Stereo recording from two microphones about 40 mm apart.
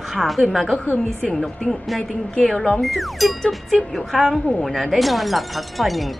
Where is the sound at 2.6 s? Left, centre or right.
Centre.